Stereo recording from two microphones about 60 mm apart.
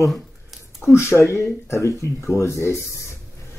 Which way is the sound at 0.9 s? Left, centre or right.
Left.